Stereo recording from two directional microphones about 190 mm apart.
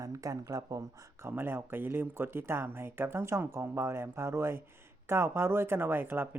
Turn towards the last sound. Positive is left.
turn(degrees=-10)  # may be behind; listen again after turning